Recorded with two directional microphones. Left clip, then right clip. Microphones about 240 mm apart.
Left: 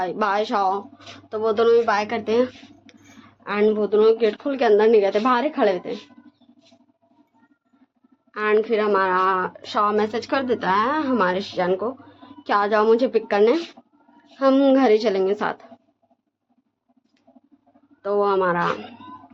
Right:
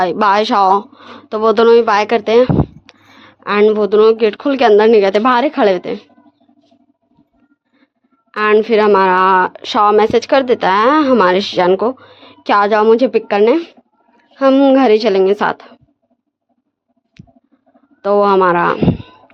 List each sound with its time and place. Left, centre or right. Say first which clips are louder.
0.0 s speech: right 10 dB; right
8.3 s a woman's voice: right 8 dB; right
17.2 s a sound: right 11 dB; right
18.0 s a woman's voice: right 9 dB; right